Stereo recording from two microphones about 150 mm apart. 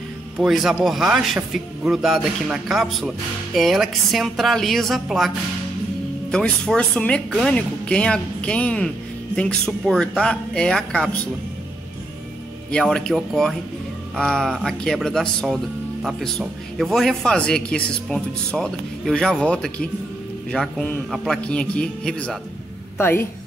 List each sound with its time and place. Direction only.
0.4 s speech: centre (ahead or behind)
6.3 s speech: 5° left (ahead or behind)
12.7 s a man's voice: 5° left (ahead or behind)
22.9 s a woman's voice: 15° left (ahead or behind)